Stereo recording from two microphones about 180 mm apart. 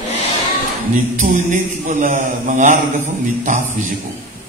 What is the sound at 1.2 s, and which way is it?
A man's voice, 45° right (ahead or behind).